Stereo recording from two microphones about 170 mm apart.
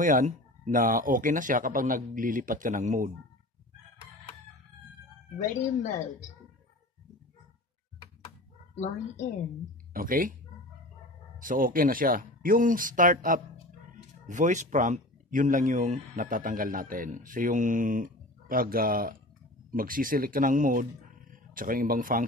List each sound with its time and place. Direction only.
0.0 s speech: 50° right (ahead or behind)
5.5 s speech: 45° left (ahead or behind)
9.9 s speech: 55° right (ahead or behind)
11.3 s speech: 55° right (ahead or behind)